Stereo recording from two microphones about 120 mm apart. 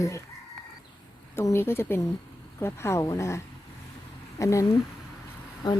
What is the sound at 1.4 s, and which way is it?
Speech, 20° left (ahead or behind).